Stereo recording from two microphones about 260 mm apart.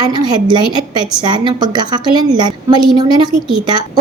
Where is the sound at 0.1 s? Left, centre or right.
Centre.